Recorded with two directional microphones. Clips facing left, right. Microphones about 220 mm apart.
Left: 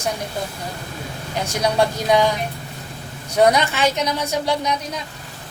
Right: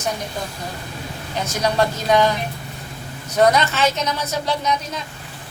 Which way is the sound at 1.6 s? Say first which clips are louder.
Left 1 dB; 10° left (ahead or behind).